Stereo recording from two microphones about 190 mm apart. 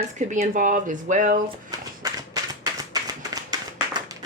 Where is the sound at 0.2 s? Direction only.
40° right (ahead or behind).